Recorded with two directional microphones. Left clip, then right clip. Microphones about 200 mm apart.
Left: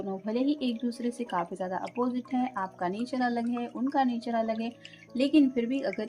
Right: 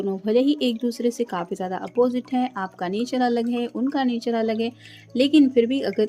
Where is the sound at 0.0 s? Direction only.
40° right (ahead or behind).